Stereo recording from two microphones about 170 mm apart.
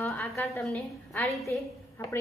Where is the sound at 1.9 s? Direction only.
15° left (ahead or behind).